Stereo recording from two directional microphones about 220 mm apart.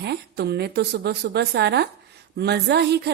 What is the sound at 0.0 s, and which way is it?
A woman's voice, 50° right (ahead or behind).